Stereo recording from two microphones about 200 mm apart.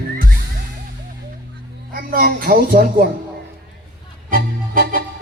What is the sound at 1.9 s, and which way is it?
A woman's voice, 45° right (ahead or behind).